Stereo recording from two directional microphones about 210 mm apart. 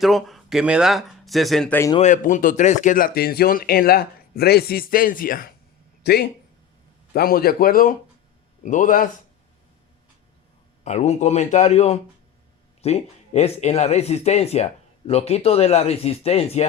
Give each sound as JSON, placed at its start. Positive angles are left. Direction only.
{"t": 0.0, "sound": "speech", "side_deg": 0}
{"t": 2.0, "sound": "a man's voice", "side_deg": 35}
{"t": 10.8, "sound": "a man's voice", "side_deg": 30}